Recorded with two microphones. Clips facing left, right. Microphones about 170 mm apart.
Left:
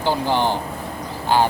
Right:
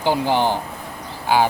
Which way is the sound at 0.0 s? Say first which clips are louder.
Right 1 dB; 15° right (ahead or behind).